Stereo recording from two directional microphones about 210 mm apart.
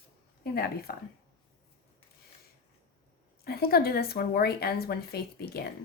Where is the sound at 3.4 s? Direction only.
45° left (ahead or behind).